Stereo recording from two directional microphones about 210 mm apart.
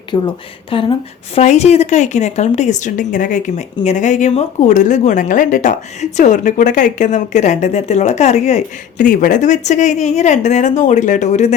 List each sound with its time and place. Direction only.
0.1 s speech: 20° left (ahead or behind)